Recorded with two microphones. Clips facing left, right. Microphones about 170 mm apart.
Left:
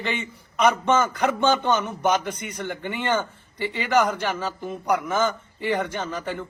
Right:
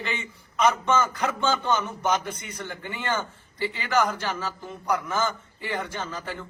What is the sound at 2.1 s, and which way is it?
A man's voice, 20° left (ahead or behind).